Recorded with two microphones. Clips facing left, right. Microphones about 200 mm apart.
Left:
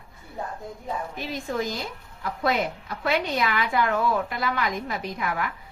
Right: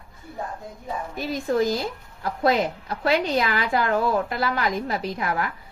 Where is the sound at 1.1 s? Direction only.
40° right (ahead or behind).